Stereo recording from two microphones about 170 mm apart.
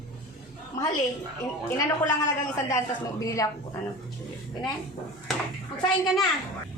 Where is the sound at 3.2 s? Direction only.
20° left (ahead or behind).